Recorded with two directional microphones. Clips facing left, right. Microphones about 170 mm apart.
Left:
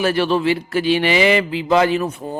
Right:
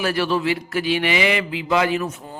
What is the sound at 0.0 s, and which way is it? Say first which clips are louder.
A man's voice: left 4 dB; 25° left (ahead or behind).